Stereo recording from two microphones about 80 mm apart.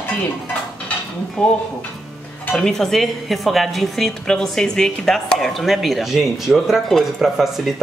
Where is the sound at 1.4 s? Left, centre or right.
Centre.